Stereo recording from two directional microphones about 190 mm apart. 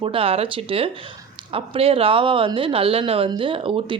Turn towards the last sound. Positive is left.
turn(degrees=-25)  # may be behind; listen again after turning